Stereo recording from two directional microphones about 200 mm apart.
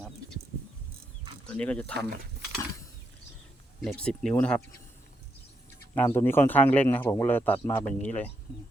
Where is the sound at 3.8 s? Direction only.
5° left (ahead or behind).